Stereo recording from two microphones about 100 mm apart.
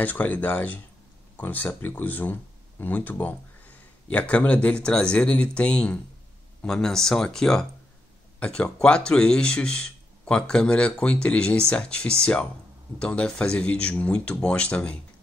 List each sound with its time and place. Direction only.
0.0 s speech: 15° left (ahead or behind)